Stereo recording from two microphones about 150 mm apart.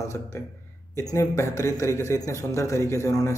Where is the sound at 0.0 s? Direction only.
20° left (ahead or behind).